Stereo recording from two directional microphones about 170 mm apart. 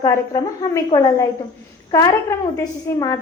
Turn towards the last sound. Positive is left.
turn(degrees=20)  # may be behind; listen again after turning